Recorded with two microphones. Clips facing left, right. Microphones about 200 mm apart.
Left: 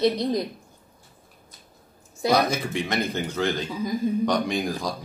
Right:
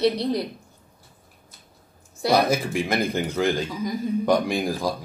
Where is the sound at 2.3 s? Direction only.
10° right (ahead or behind).